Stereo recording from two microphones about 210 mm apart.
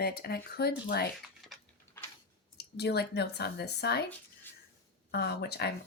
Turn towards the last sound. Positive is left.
turn(degrees=50)  # may be behind; listen again after turning